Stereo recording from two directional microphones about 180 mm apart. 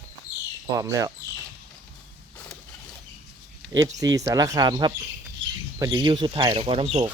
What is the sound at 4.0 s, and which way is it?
Speech, 20° right (ahead or behind).